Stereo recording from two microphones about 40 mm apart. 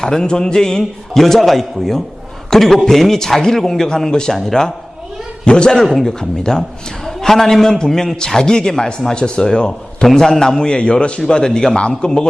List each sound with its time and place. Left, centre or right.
0.0 s a man's voice: centre
5.5 s a man's voice: left
5.8 s speech: centre
6.1 s a man's voice: centre